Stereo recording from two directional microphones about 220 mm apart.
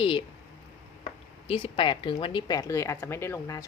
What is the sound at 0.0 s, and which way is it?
Speech, 25° left (ahead or behind).